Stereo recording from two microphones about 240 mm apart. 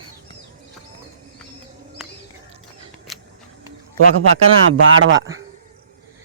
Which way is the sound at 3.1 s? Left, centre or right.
Centre.